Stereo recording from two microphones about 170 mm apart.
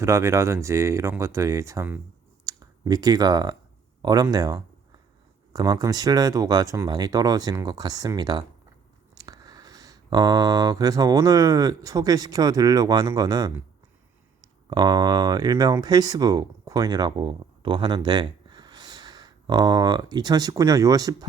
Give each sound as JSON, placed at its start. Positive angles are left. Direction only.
{"t": 0.0, "sound": "speech", "side_deg": -15}